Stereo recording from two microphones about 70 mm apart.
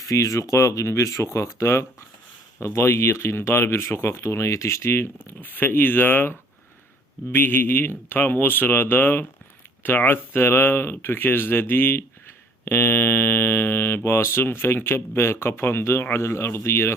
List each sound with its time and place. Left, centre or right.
0.0 s speech: left
5.2 s speech: left
7.3 s speech: left